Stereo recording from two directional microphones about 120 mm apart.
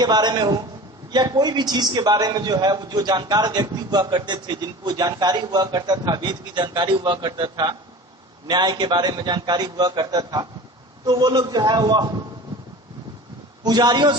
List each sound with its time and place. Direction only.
0.0 s a man's voice: 35° right (ahead or behind)
13.7 s a man's voice: 35° right (ahead or behind)